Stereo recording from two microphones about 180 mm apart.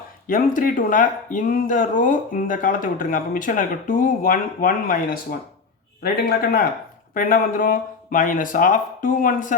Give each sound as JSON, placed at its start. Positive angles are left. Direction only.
{"t": 0.3, "sound": "a man's voice", "side_deg": 50}